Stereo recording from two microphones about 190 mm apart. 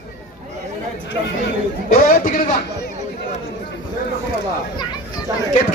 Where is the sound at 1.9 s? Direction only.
45° left (ahead or behind).